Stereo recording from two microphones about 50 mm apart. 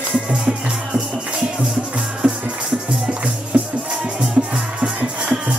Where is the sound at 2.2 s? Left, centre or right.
Centre.